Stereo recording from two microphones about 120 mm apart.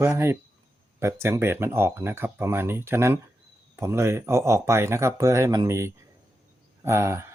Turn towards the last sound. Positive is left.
turn(degrees=-25)  # may be behind; listen again after turning